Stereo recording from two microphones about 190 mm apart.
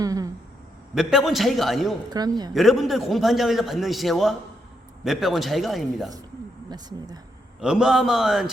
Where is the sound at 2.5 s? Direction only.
Centre (ahead or behind).